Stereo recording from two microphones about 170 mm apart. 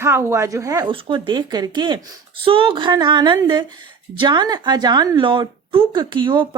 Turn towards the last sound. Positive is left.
turn(degrees=-30)  # may be behind; listen again after turning